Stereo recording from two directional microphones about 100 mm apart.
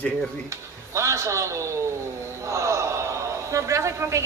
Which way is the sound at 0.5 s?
30° right (ahead or behind).